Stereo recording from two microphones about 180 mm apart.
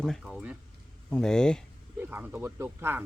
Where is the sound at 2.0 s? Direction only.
10° right (ahead or behind).